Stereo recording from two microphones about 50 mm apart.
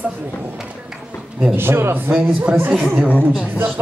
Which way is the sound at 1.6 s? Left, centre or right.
Right.